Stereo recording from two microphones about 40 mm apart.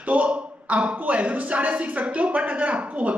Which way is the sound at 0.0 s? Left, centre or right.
Right.